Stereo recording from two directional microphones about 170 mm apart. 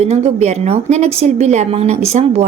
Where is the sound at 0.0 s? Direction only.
40° right (ahead or behind).